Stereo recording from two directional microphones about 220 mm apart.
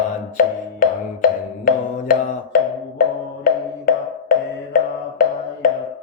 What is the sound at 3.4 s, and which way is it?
Music, 40° left (ahead or behind).